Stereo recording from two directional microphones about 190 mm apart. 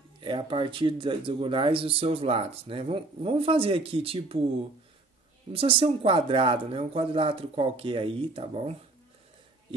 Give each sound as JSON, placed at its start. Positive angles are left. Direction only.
{"t": 0.2, "sound": "speech", "side_deg": -25}
{"t": 5.5, "sound": "speech", "side_deg": -30}